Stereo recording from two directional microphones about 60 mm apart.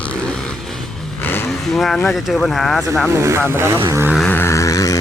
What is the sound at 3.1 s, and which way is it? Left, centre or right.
Speech, right.